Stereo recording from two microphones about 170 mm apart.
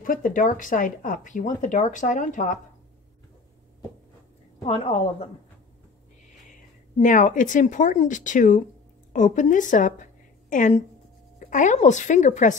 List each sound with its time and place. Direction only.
0.0 s speech: 55° left (ahead or behind)
4.6 s a woman's voice: 35° left (ahead or behind)
7.0 s a woman's voice: 50° left (ahead or behind)